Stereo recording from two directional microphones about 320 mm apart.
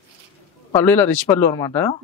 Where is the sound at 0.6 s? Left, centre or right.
Centre.